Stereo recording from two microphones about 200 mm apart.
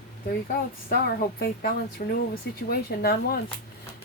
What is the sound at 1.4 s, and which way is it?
Speech, 50° left (ahead or behind).